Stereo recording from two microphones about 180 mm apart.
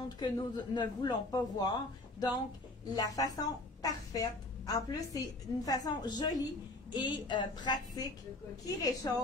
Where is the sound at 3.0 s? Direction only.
20° left (ahead or behind).